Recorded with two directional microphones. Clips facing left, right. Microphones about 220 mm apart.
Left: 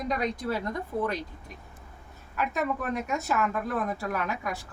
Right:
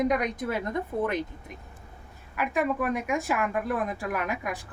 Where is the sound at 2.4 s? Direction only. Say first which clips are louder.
Right 3 dB; 10° right (ahead or behind).